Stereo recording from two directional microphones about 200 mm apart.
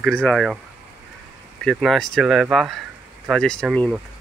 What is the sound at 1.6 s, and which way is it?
Speech, centre (ahead or behind).